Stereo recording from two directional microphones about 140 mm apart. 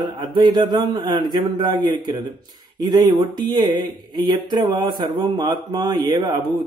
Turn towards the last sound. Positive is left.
turn(degrees=-30)  # may be behind; listen again after turning